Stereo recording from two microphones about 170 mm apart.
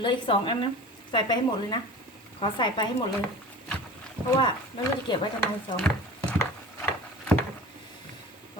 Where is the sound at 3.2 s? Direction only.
5° left (ahead or behind).